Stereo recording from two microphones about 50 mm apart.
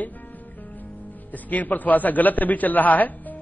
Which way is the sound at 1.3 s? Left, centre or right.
Left.